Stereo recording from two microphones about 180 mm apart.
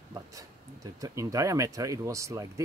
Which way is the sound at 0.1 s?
20° right (ahead or behind).